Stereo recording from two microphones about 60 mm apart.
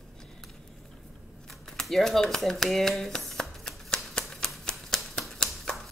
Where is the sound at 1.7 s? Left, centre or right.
Centre.